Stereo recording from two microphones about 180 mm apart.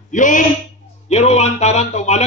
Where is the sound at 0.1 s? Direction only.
45° left (ahead or behind).